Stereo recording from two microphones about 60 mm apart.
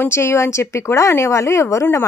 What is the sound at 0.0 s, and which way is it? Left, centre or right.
Speech, left.